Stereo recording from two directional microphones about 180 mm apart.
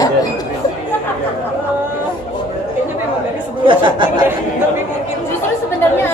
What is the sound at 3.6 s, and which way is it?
Speech, 25° right (ahead or behind).